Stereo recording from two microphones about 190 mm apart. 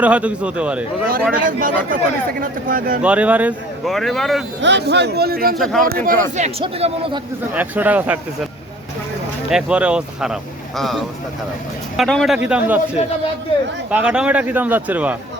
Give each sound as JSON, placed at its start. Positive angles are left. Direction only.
{"t": 0.0, "sound": "a man's voice", "side_deg": -5}
{"t": 1.3, "sound": "speech", "side_deg": -45}
{"t": 3.0, "sound": "speech", "side_deg": -5}
{"t": 4.6, "sound": "a man's voice", "side_deg": -65}
{"t": 5.5, "sound": "speech", "side_deg": 0}
{"t": 5.8, "sound": "speech", "side_deg": -50}
{"t": 6.3, "sound": "speech", "side_deg": -35}
{"t": 7.5, "sound": "a man's voice", "side_deg": -10}
{"t": 9.5, "sound": "a man's voice", "side_deg": -5}